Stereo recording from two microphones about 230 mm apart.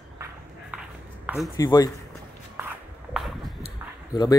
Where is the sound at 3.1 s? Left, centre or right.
Centre.